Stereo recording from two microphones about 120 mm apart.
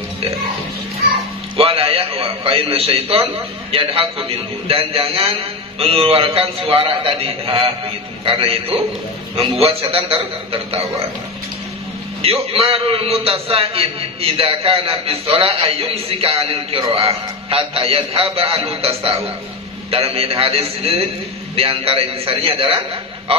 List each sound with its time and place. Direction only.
1.6 s a man's voice: 55° right (ahead or behind)
12.2 s a man's voice: 55° right (ahead or behind)